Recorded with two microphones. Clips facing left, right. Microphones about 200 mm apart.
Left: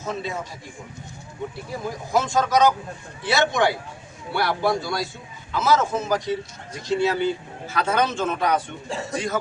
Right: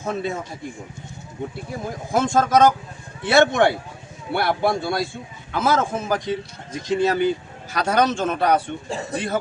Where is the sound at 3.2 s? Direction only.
55° right (ahead or behind).